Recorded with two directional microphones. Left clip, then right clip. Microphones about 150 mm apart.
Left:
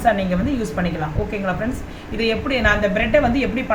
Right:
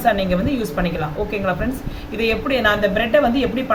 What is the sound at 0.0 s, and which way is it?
Speech, 20° right (ahead or behind).